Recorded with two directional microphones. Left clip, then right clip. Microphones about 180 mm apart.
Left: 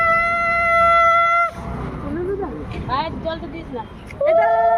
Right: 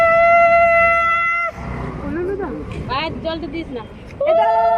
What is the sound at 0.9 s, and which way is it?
Shofar, 25° right (ahead or behind).